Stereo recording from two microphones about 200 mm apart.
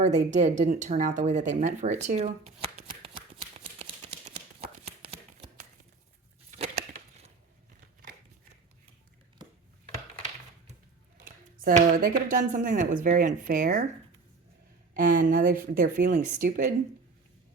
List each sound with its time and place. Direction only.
0.0 s speech: 35° right (ahead or behind)
2.9 s shuffling cards: 25° right (ahead or behind)
3.5 s a sound: 30° right (ahead or behind)
11.6 s speech: 45° right (ahead or behind)
14.9 s speech: 45° right (ahead or behind)